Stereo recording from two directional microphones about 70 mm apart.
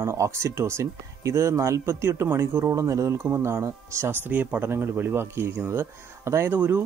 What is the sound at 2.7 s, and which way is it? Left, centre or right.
Speech, right.